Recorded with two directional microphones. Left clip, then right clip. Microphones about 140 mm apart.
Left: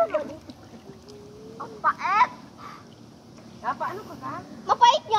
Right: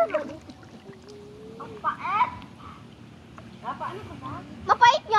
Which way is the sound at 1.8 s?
60° right (ahead or behind).